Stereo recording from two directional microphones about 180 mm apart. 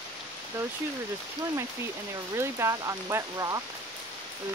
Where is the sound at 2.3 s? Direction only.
15° right (ahead or behind).